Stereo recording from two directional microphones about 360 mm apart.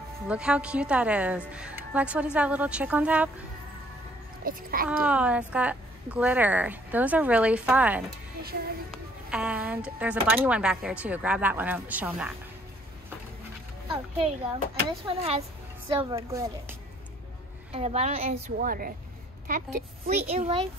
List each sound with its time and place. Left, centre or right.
0.3 s speech: centre
4.5 s a child's voice: right
4.8 s speech: centre
8.4 s music: right
8.9 s speech: centre
13.8 s a woman's voice: centre
17.7 s a woman's voice: centre
20.2 s a woman's voice: centre